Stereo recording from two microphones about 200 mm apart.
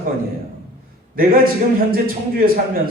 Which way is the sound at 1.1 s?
45° right (ahead or behind).